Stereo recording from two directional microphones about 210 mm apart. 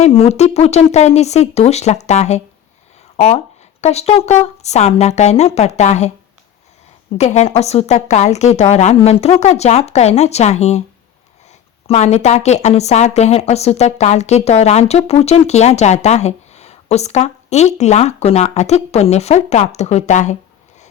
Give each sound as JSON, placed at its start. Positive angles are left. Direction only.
{"t": 0.0, "sound": "a woman's voice", "side_deg": 30}
{"t": 7.2, "sound": "a woman's voice", "side_deg": 30}
{"t": 11.9, "sound": "a woman's voice", "side_deg": 30}